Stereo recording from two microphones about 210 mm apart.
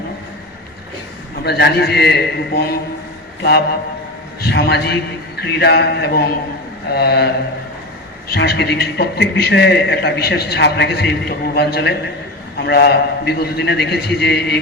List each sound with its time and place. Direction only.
1.5 s a man's voice: 50° left (ahead or behind)
4.4 s a man's voice: 45° left (ahead or behind)
8.3 s a man's voice: 50° left (ahead or behind)